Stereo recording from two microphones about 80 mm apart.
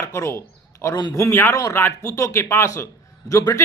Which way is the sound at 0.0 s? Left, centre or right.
Left.